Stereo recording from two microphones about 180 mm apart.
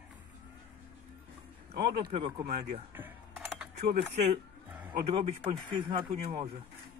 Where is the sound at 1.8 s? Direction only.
25° right (ahead or behind).